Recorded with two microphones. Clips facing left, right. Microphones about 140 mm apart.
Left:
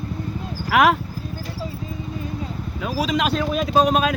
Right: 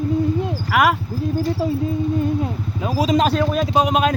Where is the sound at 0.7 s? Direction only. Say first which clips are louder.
Left 1 dB; centre (ahead or behind).